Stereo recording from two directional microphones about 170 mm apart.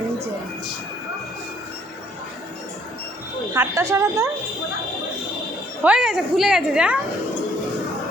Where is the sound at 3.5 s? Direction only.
15° right (ahead or behind).